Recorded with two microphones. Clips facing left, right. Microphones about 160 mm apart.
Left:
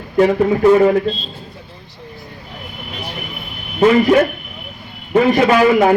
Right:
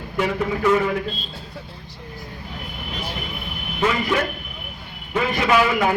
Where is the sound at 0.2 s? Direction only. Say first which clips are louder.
Left 10 dB; 35° left (ahead or behind).